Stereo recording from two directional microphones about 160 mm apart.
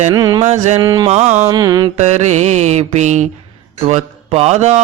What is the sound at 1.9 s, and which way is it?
Mantra, 45° right (ahead or behind).